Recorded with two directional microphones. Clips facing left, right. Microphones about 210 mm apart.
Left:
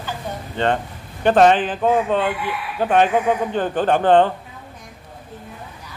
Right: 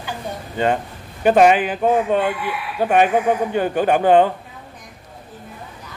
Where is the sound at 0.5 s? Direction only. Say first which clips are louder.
Right 1 dB; 10° right (ahead or behind).